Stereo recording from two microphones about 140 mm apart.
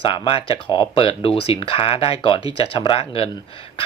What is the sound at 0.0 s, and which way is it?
Speech, 40° left (ahead or behind).